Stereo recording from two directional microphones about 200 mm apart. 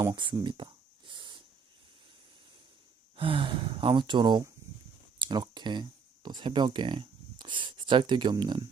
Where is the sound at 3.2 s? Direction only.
25° right (ahead or behind).